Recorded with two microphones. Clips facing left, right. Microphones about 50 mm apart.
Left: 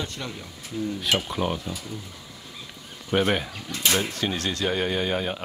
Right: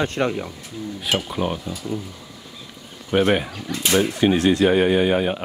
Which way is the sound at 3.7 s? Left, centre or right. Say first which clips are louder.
Right 6 dB; centre.